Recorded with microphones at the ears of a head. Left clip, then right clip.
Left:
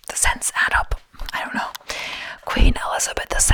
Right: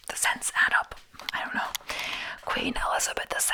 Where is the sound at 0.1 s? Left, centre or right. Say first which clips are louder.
Left 5 dB; left.